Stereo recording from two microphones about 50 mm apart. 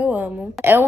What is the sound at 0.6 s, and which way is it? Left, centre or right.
Speech, right.